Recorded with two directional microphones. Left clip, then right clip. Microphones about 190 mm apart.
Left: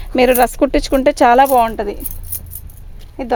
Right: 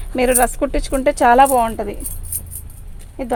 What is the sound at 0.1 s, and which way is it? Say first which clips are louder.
A woman's voice: left 4 dB; 55° left (ahead or behind).